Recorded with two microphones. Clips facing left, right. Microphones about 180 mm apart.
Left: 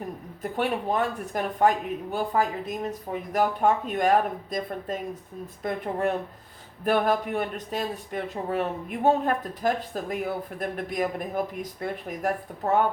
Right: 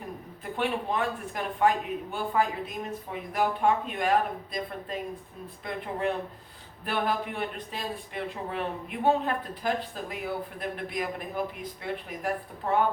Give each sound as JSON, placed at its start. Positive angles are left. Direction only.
{"t": 0.4, "sound": "speech", "side_deg": 45}